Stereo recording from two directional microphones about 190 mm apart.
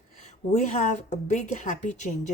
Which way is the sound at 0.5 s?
40° left (ahead or behind).